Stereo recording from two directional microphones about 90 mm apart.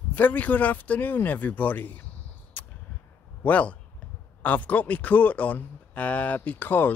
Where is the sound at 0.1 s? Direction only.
20° left (ahead or behind).